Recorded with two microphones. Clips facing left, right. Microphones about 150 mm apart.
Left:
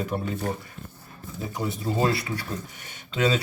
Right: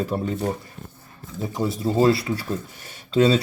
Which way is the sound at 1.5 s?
30° right (ahead or behind).